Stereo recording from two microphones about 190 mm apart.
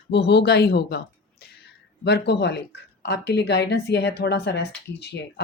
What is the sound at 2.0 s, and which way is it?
A woman's voice, 60° left (ahead or behind).